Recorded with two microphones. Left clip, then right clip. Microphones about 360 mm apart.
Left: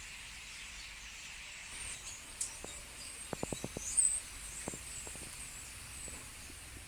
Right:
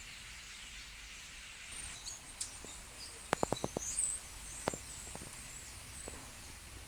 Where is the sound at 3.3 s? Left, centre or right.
Right.